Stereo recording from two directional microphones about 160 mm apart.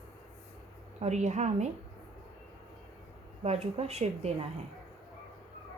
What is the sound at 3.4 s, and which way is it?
Speech, 40° right (ahead or behind).